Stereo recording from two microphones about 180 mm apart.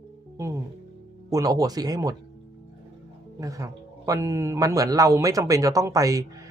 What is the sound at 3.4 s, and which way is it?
Speech, 20° right (ahead or behind).